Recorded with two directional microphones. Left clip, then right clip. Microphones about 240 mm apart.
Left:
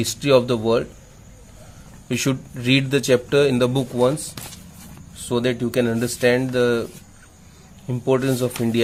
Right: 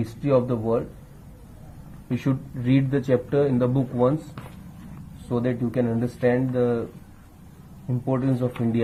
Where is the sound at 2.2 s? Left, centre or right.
Left.